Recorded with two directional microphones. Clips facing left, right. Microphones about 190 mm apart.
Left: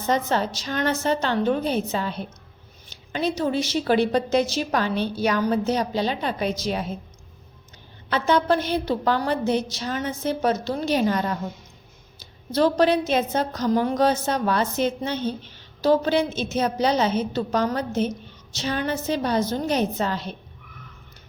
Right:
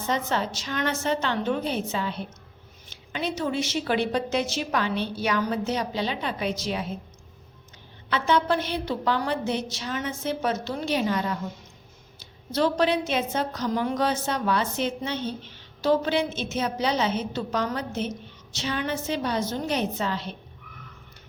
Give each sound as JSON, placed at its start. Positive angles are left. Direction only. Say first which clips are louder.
{"t": 0.1, "sound": "a woman's voice", "louder": "left 4 dB", "side_deg": 40}
{"t": 8.1, "sound": "a woman's voice", "louder": "left 3 dB", "side_deg": 40}